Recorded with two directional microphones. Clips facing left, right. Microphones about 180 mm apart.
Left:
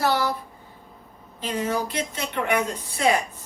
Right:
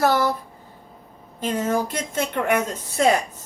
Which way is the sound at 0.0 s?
45° right (ahead or behind).